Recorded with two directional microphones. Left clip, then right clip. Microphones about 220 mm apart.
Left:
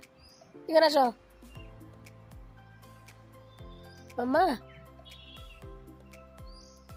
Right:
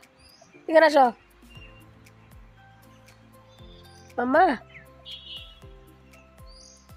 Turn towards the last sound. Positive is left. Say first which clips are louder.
# right 9 dB
turn(degrees=0)  # may be behind; listen again after turning